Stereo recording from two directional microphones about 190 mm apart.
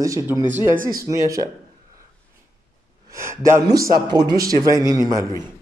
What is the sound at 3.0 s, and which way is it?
Speech, 15° right (ahead or behind).